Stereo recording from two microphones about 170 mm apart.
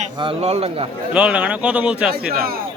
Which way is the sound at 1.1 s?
5° right (ahead or behind).